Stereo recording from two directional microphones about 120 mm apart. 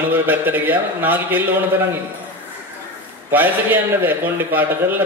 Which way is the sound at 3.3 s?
15° right (ahead or behind).